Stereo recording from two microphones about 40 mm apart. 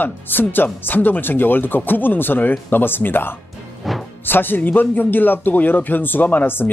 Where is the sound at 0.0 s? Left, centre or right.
Left.